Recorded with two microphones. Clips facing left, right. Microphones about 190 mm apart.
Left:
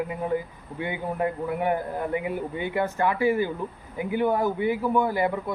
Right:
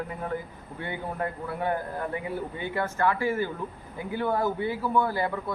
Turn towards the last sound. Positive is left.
turn(degrees=15)  # may be behind; listen again after turning